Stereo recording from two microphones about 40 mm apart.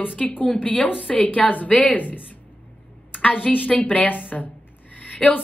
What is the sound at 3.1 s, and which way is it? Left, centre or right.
A woman's voice, left.